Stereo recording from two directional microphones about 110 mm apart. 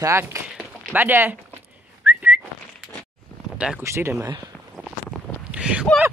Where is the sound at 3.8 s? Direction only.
25° right (ahead or behind).